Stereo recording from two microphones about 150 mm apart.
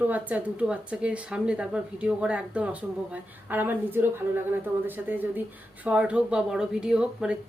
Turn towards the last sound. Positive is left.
turn(degrees=-5)  # may be behind; listen again after turning